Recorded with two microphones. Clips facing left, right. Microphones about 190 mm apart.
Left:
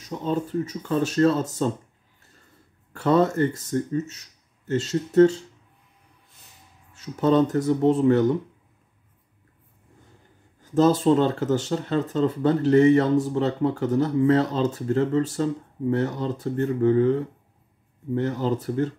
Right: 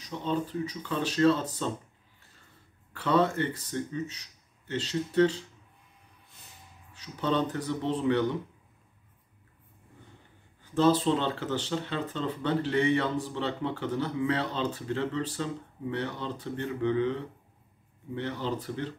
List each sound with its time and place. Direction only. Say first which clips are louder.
0.0 s speech: left 4 dB; 45° left (ahead or behind)
2.9 s speech: left 6 dB; 45° left (ahead or behind)
6.9 s speech: left 9 dB; 45° left (ahead or behind)
10.6 s speech: left 5 dB; 45° left (ahead or behind)